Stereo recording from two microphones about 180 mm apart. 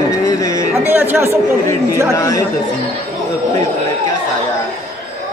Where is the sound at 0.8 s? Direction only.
10° right (ahead or behind).